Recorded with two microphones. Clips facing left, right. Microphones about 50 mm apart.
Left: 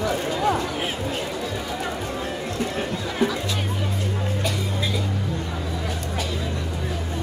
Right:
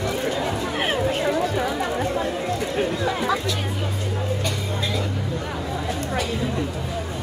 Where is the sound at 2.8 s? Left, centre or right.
Centre.